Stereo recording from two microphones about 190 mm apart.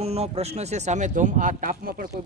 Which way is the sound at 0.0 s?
30° right (ahead or behind).